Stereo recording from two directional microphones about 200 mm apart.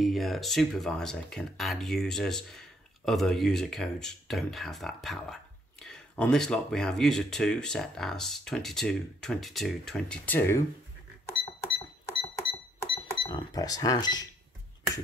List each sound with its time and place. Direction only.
0.0 s speech: centre (ahead or behind)
12.9 s speech: 25° left (ahead or behind)